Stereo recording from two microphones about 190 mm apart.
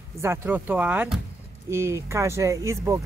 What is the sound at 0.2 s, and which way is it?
Speech, 10° right (ahead or behind).